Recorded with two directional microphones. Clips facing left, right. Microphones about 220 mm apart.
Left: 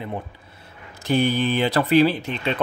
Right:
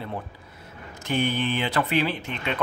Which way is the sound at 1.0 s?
35° left (ahead or behind).